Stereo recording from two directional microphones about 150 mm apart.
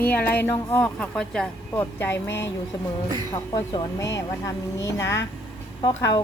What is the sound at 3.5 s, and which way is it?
Speech, 25° left (ahead or behind).